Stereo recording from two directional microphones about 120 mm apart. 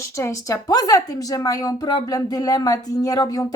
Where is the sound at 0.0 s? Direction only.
25° left (ahead or behind).